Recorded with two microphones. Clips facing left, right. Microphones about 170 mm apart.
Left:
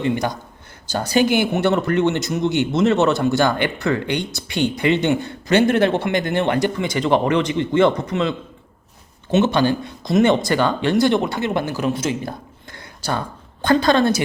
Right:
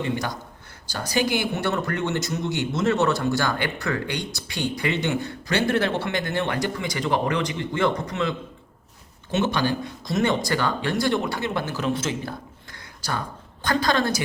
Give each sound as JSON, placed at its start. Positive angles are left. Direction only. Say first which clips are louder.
{"t": 0.9, "sound": "speech", "louder": "left 7 dB", "side_deg": 25}
{"t": 13.7, "sound": "speech", "louder": "left 7 dB", "side_deg": 20}